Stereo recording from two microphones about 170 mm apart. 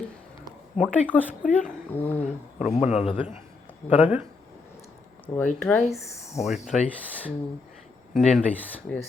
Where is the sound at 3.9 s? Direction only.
10° right (ahead or behind).